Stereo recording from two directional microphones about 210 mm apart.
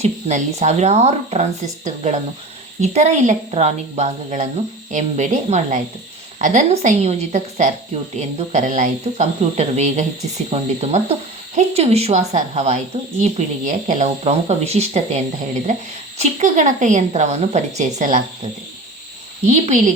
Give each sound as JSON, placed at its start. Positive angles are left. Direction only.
{"t": 0.0, "sound": "speech", "side_deg": -35}
{"t": 19.5, "sound": "speech", "side_deg": -35}